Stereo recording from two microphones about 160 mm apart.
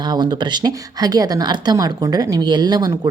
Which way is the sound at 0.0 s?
25° right (ahead or behind).